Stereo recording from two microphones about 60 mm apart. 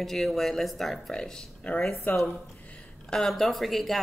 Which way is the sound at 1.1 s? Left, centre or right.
Centre.